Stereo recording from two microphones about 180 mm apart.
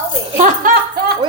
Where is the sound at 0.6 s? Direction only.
50° right (ahead or behind).